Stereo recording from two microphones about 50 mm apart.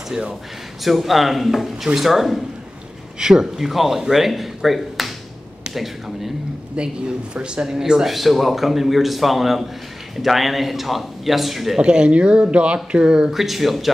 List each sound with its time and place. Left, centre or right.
0.1 s speech: centre
0.8 s speech: centre
6.8 s speech: right; by 11.8 s centre
11.8 s speech: centre
13.3 s speech: centre